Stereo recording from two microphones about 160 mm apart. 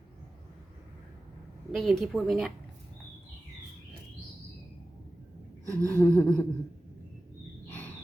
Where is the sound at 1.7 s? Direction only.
Centre (ahead or behind).